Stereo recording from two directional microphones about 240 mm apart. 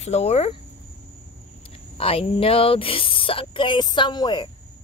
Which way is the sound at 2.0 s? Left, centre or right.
Left.